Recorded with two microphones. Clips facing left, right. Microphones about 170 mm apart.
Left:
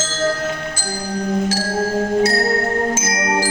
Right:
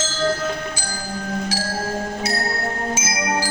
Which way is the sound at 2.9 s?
50° left (ahead or behind).